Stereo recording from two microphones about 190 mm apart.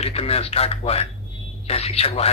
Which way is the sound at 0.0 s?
30° left (ahead or behind).